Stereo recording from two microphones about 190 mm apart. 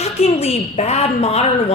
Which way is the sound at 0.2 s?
35° left (ahead or behind).